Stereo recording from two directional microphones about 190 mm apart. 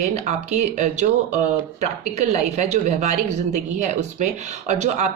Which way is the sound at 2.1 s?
35° right (ahead or behind).